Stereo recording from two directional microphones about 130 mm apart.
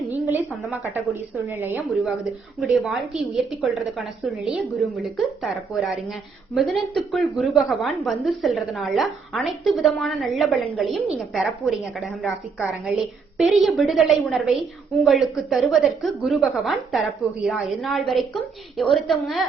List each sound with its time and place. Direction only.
1.4 s a woman's voice: 20° right (ahead or behind)
2.6 s a woman's voice: 5° right (ahead or behind)